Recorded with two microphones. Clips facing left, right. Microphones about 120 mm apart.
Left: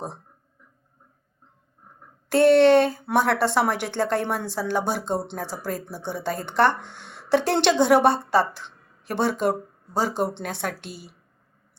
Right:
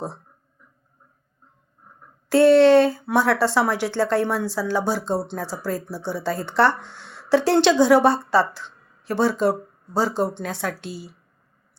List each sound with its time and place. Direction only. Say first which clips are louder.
2.3 s a woman's voice: right 2 dB; 55° left (ahead or behind)